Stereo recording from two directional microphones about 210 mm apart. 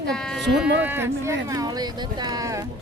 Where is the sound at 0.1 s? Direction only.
5° left (ahead or behind).